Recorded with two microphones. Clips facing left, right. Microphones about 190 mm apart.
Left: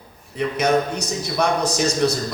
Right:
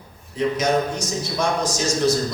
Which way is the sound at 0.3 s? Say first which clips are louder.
Left 1 dB; 60° left (ahead or behind).